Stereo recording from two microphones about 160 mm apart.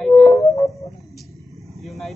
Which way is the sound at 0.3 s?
20° left (ahead or behind).